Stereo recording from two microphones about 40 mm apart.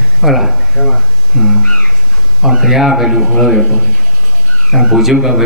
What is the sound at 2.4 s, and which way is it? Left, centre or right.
A man's voice, centre.